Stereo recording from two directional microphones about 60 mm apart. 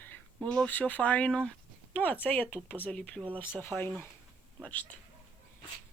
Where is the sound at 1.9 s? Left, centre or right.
Left.